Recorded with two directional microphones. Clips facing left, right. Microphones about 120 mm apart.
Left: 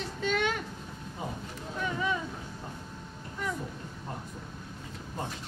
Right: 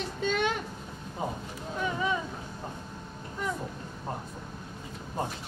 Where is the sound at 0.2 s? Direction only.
20° right (ahead or behind).